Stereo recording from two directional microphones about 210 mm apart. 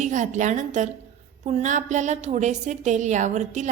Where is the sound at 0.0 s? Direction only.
35° right (ahead or behind).